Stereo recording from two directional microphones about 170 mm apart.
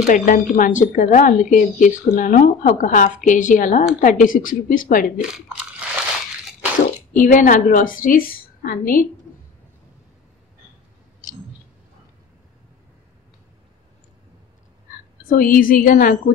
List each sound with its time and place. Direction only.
0.0 s speech: 50° left (ahead or behind)
7.2 s speech: 50° left (ahead or behind)
15.2 s a woman's voice: 55° left (ahead or behind)